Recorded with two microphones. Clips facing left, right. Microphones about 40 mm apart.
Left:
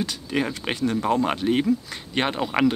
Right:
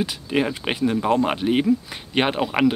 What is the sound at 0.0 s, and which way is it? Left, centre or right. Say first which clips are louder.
Speech: right 3 dB; centre.